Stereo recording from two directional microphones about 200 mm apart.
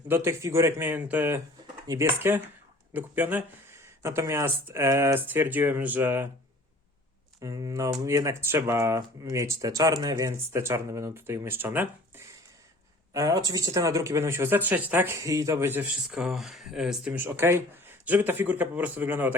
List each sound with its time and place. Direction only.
0.1 s speech: 10° right (ahead or behind)
7.4 s speech: 15° right (ahead or behind)